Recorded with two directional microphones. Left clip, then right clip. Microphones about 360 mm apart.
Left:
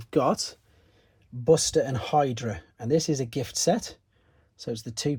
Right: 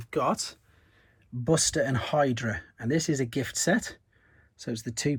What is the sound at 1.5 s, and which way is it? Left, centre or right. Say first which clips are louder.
Speech: left 4 dB; left.